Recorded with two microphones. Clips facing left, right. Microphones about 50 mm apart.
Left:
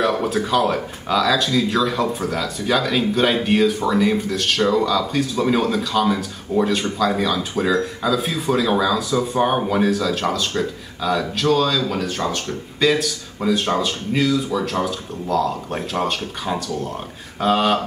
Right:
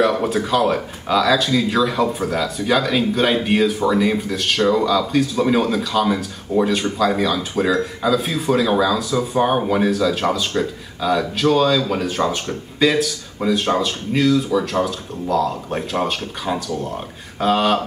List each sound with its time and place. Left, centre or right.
0.0 s speech: centre